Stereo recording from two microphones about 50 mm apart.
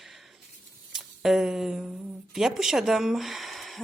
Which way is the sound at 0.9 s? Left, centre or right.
Centre.